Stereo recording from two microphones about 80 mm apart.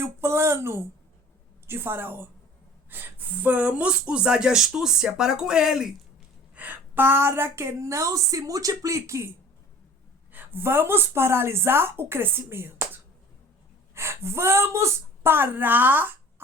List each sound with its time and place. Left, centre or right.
0.0 s a woman's voice: right; by 5.9 s centre
6.6 s a woman's voice: right
10.3 s a woman's voice: right